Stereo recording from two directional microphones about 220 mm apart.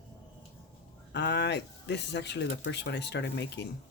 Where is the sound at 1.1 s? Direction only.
50° left (ahead or behind).